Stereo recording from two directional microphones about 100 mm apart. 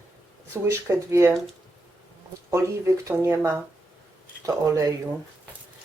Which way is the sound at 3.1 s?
20° right (ahead or behind).